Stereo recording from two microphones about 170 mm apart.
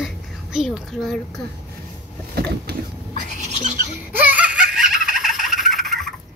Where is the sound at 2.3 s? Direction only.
70° right (ahead or behind).